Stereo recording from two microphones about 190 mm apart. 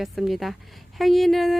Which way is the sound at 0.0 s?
Centre (ahead or behind).